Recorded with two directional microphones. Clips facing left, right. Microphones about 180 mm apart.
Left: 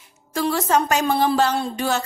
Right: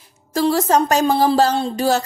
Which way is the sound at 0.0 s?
35° right (ahead or behind).